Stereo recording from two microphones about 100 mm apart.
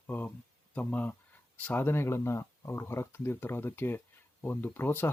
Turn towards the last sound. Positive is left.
turn(degrees=20)  # may be behind; listen again after turning